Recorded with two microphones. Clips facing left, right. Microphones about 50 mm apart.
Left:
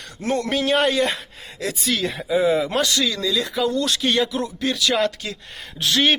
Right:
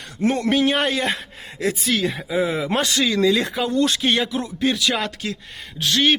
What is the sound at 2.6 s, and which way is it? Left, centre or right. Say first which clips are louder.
Speech: right 1 dB; right.